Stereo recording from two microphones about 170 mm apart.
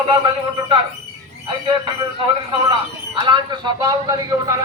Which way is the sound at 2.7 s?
25° right (ahead or behind).